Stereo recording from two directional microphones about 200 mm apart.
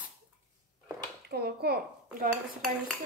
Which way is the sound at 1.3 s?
50° right (ahead or behind).